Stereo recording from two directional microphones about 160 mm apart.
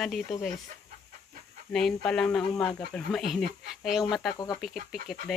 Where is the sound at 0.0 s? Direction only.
Centre (ahead or behind).